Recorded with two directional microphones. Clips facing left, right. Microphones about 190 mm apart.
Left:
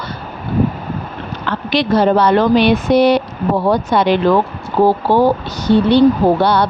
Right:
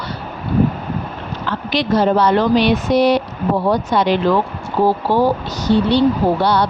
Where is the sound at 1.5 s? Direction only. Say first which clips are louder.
Left 2 dB; 65° left (ahead or behind).